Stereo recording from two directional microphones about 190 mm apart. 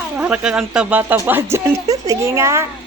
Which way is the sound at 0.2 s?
5° right (ahead or behind).